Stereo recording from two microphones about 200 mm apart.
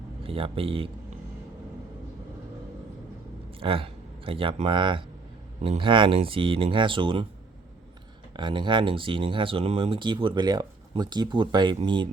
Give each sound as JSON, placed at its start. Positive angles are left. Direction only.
{"t": 0.2, "sound": "speech", "side_deg": -25}
{"t": 3.6, "sound": "speech", "side_deg": -25}
{"t": 8.4, "sound": "speech", "side_deg": -25}